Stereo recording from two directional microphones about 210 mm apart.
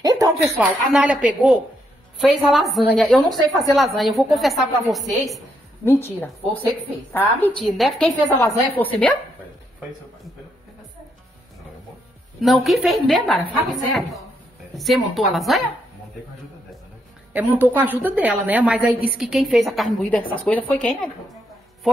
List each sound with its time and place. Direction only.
0.0 s a sound: 15° right (ahead or behind)
0.6 s a woman's voice: 5° right (ahead or behind)
5.9 s a woman's voice: 10° left (ahead or behind)
12.4 s a woman's voice: centre (ahead or behind)
14.8 s a woman's voice: centre (ahead or behind)
17.3 s a woman's voice: 10° right (ahead or behind)